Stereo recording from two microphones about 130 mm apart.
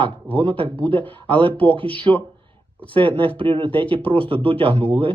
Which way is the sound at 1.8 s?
45° right (ahead or behind).